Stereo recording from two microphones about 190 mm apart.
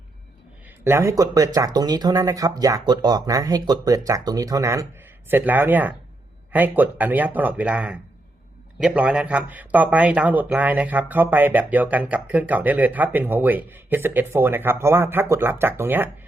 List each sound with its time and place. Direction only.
0.9 s speech: 15° right (ahead or behind)